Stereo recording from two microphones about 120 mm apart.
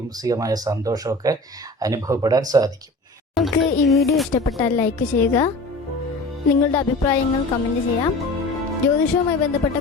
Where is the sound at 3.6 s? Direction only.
Centre (ahead or behind).